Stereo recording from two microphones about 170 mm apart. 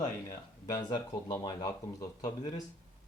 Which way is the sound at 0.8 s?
25° left (ahead or behind).